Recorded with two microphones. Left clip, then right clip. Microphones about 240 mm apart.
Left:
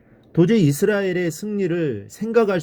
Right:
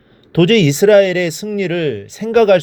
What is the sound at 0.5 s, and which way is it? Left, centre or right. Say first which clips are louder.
Speech: right 14 dB; centre.